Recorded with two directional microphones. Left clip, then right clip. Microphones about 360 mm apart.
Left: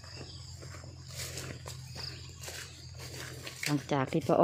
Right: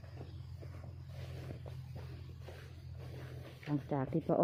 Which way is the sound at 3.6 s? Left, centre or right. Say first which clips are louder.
Left 7 dB; centre.